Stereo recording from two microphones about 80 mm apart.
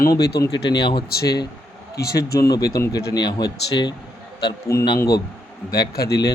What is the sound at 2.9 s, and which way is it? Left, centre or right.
Speech, left.